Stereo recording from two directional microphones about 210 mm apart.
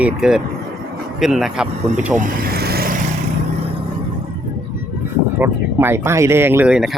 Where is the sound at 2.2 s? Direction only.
40° right (ahead or behind).